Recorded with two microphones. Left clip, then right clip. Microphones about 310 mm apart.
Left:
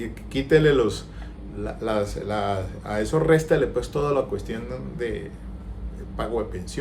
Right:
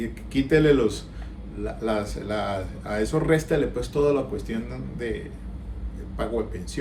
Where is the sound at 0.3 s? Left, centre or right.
Centre.